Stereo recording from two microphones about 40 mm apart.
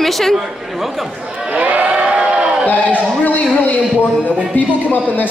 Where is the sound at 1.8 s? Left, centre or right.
Right.